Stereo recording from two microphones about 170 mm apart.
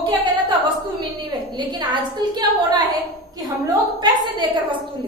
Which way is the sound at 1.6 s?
25° right (ahead or behind).